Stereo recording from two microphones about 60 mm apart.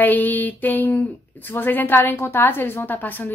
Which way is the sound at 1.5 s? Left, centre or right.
Left.